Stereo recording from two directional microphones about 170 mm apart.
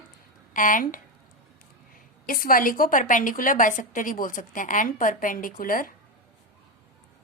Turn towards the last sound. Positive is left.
turn(degrees=55)  # may be behind; listen again after turning